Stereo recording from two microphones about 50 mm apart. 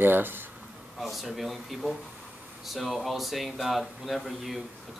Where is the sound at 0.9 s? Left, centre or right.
Centre.